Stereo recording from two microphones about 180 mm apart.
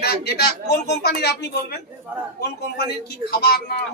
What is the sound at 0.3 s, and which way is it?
A woman's voice, 65° left (ahead or behind).